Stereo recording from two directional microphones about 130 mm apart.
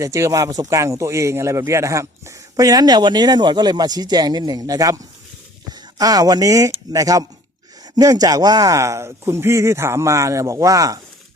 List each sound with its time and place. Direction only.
0.0 s speech: 25° right (ahead or behind)
6.0 s speech: 30° right (ahead or behind)